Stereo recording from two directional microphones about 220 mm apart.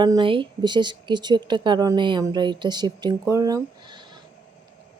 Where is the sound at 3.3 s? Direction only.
15° right (ahead or behind).